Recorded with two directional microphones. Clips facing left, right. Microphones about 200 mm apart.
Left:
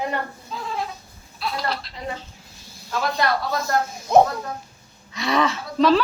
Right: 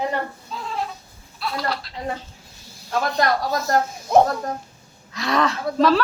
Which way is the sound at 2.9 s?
45° right (ahead or behind).